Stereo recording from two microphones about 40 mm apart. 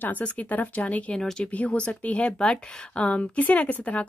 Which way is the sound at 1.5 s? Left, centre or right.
Left.